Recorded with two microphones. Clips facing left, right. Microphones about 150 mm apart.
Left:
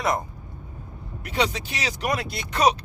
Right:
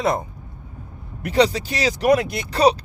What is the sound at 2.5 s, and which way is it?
Speech, 30° right (ahead or behind).